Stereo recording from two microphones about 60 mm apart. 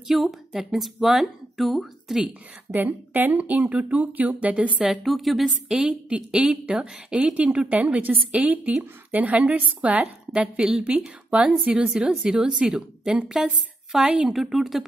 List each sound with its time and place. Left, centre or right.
0.1 s speech: centre
2.7 s speech: right
5.0 s a woman's voice: centre